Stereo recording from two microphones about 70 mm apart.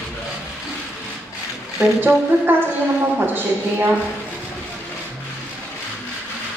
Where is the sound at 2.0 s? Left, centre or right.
Right.